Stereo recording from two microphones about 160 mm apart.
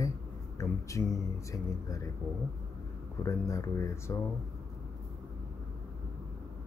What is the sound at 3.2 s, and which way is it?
Speech, 20° left (ahead or behind).